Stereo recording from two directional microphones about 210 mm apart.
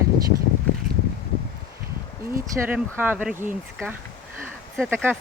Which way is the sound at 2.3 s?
10° right (ahead or behind).